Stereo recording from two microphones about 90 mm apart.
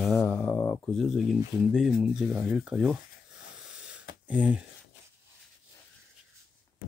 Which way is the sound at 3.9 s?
15° right (ahead or behind).